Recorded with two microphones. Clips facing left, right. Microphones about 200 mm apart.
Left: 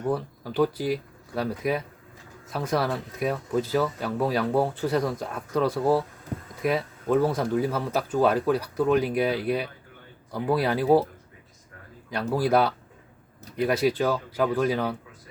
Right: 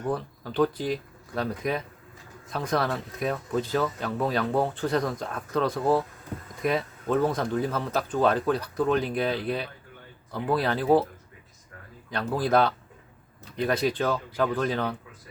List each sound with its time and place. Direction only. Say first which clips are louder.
0.0 s speech: left 2 dB; 10° left (ahead or behind)
12.3 s speech: left 1 dB; 10° left (ahead or behind)